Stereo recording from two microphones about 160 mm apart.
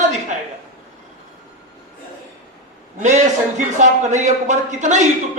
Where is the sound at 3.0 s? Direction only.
50° right (ahead or behind).